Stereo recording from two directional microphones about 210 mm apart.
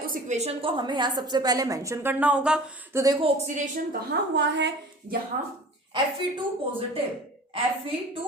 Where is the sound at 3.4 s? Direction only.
35° right (ahead or behind).